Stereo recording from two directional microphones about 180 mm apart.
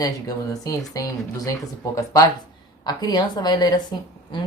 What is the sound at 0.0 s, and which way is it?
Speech, 20° left (ahead or behind).